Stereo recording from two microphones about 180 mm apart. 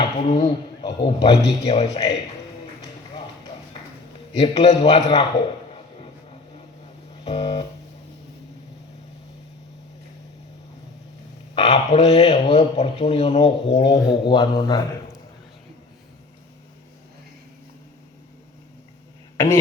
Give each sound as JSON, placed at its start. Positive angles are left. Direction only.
{"t": 0.0, "sound": "speech", "side_deg": 35}
{"t": 4.4, "sound": "speech", "side_deg": 35}
{"t": 7.3, "sound": "a man's voice", "side_deg": 30}
{"t": 11.5, "sound": "a man's voice", "side_deg": 35}